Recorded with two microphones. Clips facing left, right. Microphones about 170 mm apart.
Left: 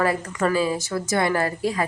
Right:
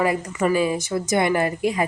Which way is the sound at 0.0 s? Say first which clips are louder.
Right 1 dB; 15° right (ahead or behind).